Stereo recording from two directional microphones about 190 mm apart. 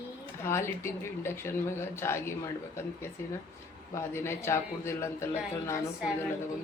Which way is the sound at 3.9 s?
15° left (ahead or behind).